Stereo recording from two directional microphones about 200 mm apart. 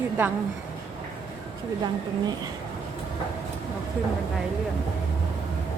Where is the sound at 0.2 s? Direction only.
5° right (ahead or behind).